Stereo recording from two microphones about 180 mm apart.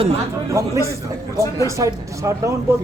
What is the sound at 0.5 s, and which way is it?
A man's voice, 15° right (ahead or behind).